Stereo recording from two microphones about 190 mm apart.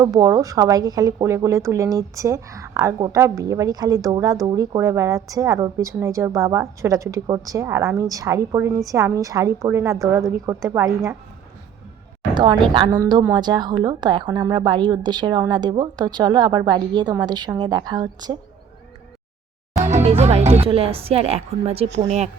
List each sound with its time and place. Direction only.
0.0 s speech: 20° right (ahead or behind)
12.3 s a woman's voice: 25° right (ahead or behind)
19.7 s speech: 35° right (ahead or behind)